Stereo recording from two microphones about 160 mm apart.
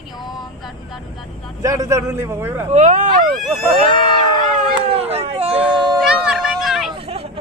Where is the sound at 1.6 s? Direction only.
20° right (ahead or behind).